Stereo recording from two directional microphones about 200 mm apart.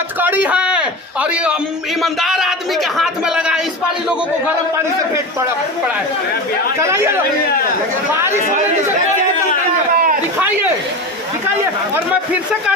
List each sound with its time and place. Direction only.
0.2 s a man's voice: 10° right (ahead or behind)
6.8 s a man's voice: 10° right (ahead or behind)
9.9 s a sound: 45° right (ahead or behind)
11.9 s a man's voice: 5° right (ahead or behind)